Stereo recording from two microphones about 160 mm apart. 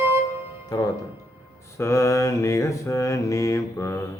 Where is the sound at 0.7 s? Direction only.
25° left (ahead or behind).